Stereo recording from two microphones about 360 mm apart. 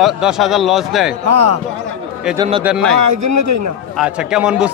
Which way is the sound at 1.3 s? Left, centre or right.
Right.